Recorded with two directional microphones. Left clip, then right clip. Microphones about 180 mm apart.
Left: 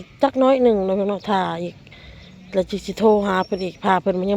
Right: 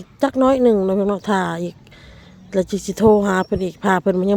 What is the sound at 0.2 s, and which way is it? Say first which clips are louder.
Speech: even; 40° right (ahead or behind).